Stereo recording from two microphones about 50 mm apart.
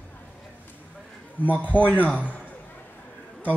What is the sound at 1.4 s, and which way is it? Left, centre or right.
Speech, left.